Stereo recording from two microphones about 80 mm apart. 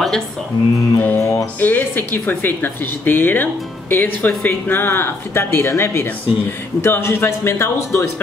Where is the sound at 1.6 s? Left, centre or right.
Left.